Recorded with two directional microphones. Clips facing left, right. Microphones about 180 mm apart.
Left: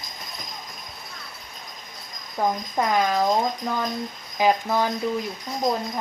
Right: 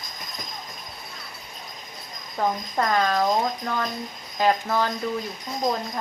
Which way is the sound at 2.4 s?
10° left (ahead or behind).